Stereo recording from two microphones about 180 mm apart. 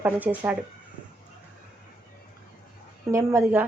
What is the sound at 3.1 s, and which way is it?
Speech, 15° right (ahead or behind).